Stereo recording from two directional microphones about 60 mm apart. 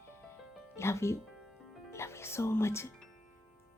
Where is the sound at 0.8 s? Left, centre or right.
Left.